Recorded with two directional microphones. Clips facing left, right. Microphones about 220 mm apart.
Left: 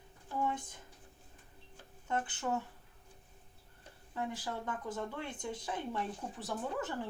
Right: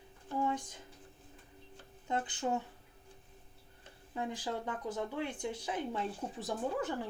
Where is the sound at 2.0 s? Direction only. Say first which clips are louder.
Right 1 dB; 15° right (ahead or behind).